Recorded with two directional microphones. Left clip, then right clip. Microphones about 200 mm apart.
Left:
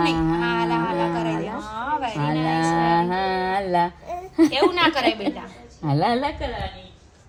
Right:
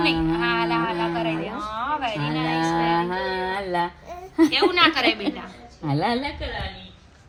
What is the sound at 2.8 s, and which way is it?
Music, 20° right (ahead or behind).